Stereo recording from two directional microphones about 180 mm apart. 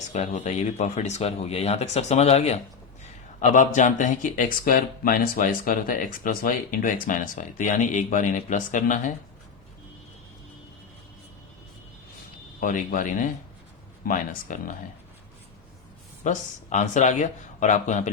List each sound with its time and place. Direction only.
0.1 s speech: 40° left (ahead or behind)
12.5 s speech: 45° left (ahead or behind)
16.2 s speech: 40° left (ahead or behind)